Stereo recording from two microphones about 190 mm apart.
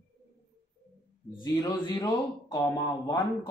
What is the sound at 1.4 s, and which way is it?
Speech, 20° left (ahead or behind).